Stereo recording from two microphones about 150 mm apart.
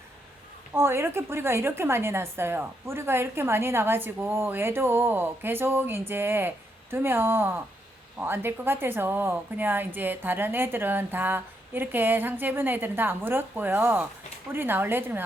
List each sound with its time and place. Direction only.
0.7 s a woman's voice: 15° right (ahead or behind)